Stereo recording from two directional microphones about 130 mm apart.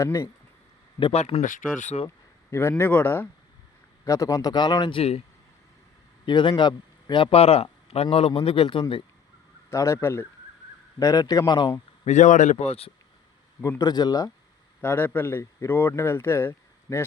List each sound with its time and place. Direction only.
0.0 s a man's voice: 25° left (ahead or behind)
1.1 s speech: 60° left (ahead or behind); by 2.0 s 80° left
2.0 s speech: 20° left (ahead or behind); by 5.2 s 50° left (ahead or behind)
6.2 s a man's voice: 35° left (ahead or behind)
9.6 s a man's voice: 20° left (ahead or behind)
12.0 s speech: 65° left (ahead or behind)
13.6 s a man's voice: 25° left (ahead or behind)
14.8 s speech: 15° left (ahead or behind)